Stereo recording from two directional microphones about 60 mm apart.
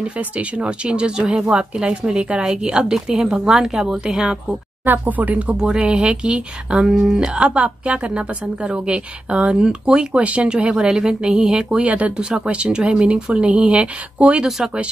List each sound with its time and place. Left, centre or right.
0.0 s a woman's voice: right
4.8 s speech: right
5.6 s a woman's voice: centre
11.8 s a woman's voice: right